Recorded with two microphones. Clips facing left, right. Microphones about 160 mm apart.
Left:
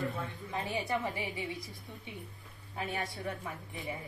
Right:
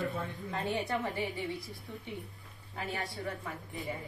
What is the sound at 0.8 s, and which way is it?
Speech, 20° left (ahead or behind).